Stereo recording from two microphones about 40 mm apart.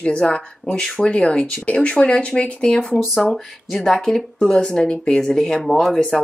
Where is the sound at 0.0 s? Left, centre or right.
Left.